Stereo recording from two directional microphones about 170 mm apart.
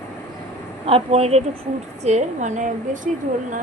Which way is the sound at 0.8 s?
35° right (ahead or behind).